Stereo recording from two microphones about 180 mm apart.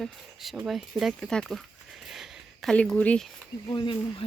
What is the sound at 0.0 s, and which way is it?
Speech, centre (ahead or behind).